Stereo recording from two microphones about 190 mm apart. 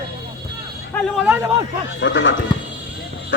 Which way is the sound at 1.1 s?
5° right (ahead or behind).